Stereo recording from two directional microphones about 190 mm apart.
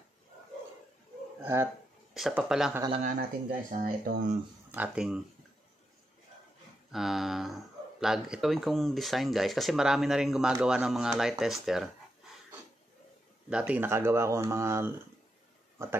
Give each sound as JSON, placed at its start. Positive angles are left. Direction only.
{"t": 1.4, "sound": "speech", "side_deg": -15}
{"t": 2.1, "sound": "speech", "side_deg": 0}
{"t": 3.0, "sound": "speech", "side_deg": -40}
{"t": 4.6, "sound": "speech", "side_deg": -10}
{"t": 6.9, "sound": "speech", "side_deg": 0}
{"t": 13.5, "sound": "speech", "side_deg": -5}